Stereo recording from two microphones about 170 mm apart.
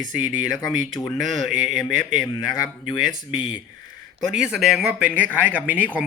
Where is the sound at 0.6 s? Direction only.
20° left (ahead or behind).